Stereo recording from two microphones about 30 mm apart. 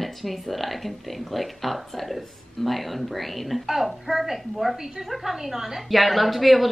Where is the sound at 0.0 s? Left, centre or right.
Centre.